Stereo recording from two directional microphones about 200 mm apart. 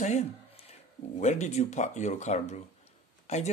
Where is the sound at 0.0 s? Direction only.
35° left (ahead or behind).